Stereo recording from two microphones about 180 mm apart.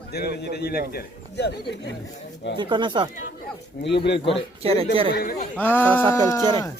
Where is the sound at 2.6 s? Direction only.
25° right (ahead or behind).